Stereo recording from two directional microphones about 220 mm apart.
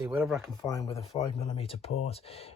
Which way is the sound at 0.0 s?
10° right (ahead or behind).